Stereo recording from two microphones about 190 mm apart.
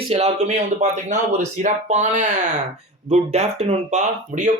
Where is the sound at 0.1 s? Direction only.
35° right (ahead or behind).